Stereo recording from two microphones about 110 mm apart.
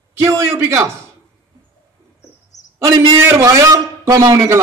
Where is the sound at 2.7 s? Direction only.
25° right (ahead or behind).